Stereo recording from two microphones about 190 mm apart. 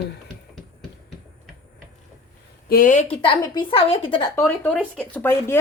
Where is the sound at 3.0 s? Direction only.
30° left (ahead or behind).